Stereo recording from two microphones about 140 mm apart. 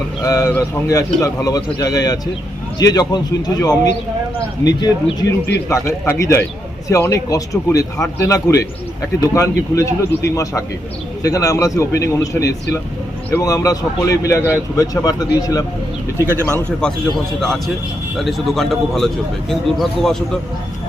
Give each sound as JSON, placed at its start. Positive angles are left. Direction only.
{"t": 0.3, "sound": "speech", "side_deg": 25}
{"t": 16.2, "sound": "speech", "side_deg": -20}
{"t": 16.8, "sound": "a man's voice", "side_deg": 5}